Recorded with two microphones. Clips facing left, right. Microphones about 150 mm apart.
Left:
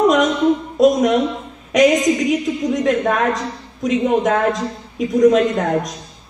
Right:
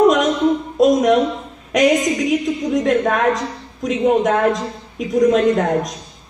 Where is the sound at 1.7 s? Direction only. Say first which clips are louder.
Left 2 dB; centre (ahead or behind).